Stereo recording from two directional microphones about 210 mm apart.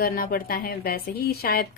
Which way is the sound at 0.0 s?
45° left (ahead or behind).